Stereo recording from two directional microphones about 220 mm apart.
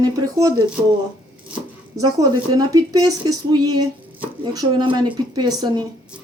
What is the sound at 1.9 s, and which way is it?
A woman's voice, 15° right (ahead or behind).